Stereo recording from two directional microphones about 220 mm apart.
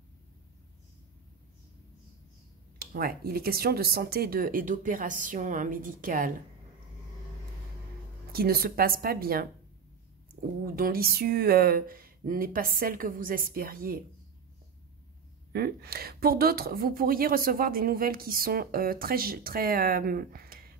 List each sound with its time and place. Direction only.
2.8 s speech: 45° right (ahead or behind)
8.3 s speech: 45° right (ahead or behind)
10.6 s speech: 40° right (ahead or behind)
15.5 s speech: 45° right (ahead or behind)